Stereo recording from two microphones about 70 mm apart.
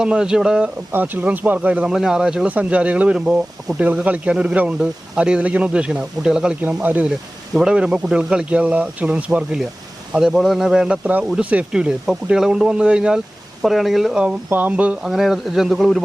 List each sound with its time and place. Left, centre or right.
0.0 s speech: centre
0.9 s speech: right; by 2.5 s centre
2.5 s speech: centre
6.8 s speech: right
7.5 s speech: centre
14.5 s speech: right
15.0 s speech: centre